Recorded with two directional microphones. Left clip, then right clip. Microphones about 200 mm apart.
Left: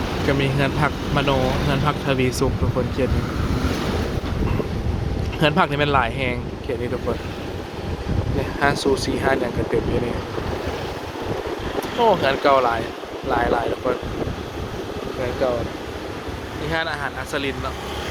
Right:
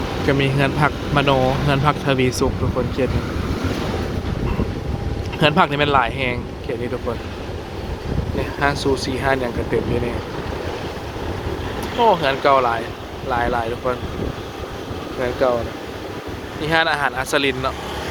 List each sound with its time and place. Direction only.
0.3 s speech: 10° right (ahead or behind)
5.4 s speech: 5° right (ahead or behind)
8.6 s speech: 5° left (ahead or behind)
11.9 s speech: centre (ahead or behind)
15.4 s speech: 20° right (ahead or behind)
16.7 s speech: 35° right (ahead or behind)
17.2 s speech: 55° right (ahead or behind)